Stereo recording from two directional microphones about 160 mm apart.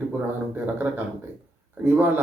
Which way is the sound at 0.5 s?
10° right (ahead or behind).